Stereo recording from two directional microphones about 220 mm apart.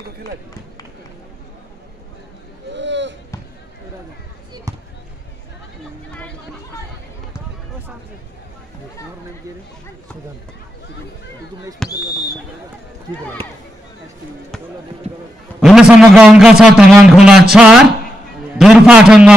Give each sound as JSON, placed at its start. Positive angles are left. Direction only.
{"t": 2.7, "sound": "a sound", "side_deg": -55}
{"t": 4.7, "sound": "basketball bounce", "side_deg": -15}
{"t": 11.8, "sound": "a man's voice", "side_deg": 0}
{"t": 15.6, "sound": "a man's voice", "side_deg": 0}